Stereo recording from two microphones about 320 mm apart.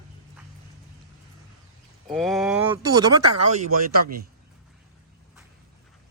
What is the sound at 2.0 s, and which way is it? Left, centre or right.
Speech, centre.